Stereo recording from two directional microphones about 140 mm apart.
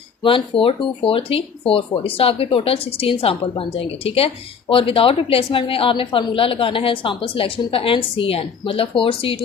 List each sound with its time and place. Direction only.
0.2 s a woman's voice: 40° left (ahead or behind)